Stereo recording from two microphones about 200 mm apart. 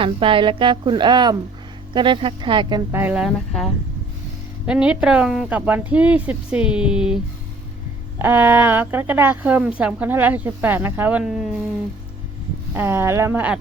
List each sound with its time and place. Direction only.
0.0 s a woman's voice: 25° right (ahead or behind)
2.9 s a woman's voice: 10° right (ahead or behind)
8.2 s a woman's voice: 10° right (ahead or behind)
12.7 s a woman's voice: 10° right (ahead or behind)